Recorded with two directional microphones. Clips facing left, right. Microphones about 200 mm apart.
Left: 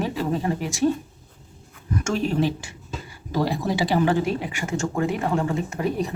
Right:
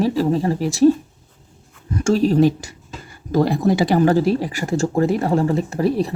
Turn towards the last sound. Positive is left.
turn(degrees=-35)  # may be behind; listen again after turning